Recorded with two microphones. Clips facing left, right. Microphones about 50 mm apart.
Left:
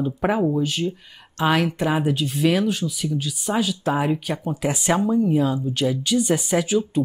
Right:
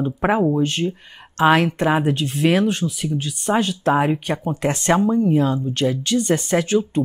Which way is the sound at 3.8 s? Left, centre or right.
Centre.